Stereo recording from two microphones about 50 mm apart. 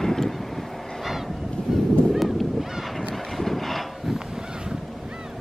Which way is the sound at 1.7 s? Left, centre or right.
Centre.